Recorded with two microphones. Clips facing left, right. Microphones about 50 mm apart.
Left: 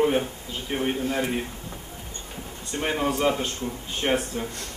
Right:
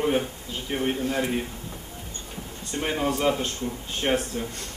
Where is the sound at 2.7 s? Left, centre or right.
Centre.